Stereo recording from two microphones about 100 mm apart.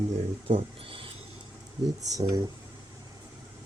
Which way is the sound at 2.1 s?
35° right (ahead or behind).